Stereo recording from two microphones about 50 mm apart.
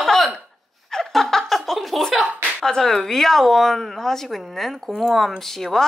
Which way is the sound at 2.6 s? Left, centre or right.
Centre.